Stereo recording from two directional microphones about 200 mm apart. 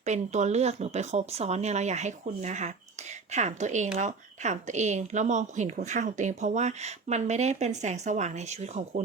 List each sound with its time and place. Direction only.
0.0 s a woman's voice: 35° right (ahead or behind)